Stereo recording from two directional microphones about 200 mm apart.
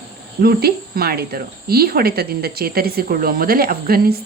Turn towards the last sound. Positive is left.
turn(degrees=-50)  # may be behind; listen again after turning